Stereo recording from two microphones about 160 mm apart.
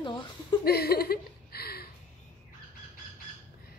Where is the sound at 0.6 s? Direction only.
75° left (ahead or behind).